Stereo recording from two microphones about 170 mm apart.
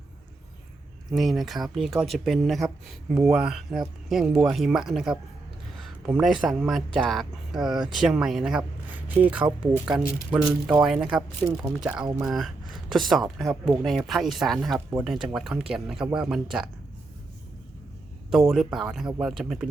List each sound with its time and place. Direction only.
1.1 s speech: centre (ahead or behind)
18.3 s speech: centre (ahead or behind)